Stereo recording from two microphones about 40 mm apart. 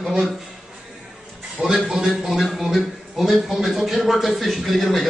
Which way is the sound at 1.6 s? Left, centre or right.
Right.